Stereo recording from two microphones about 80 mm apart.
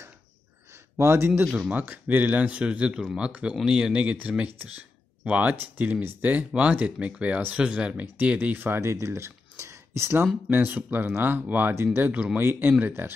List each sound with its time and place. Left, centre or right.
0.9 s speech: right
1.7 s speech: centre